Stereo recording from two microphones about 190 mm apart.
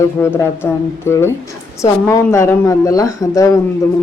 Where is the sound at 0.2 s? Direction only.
10° left (ahead or behind).